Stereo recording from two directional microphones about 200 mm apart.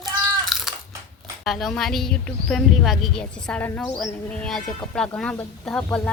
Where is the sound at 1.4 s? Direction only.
Centre (ahead or behind).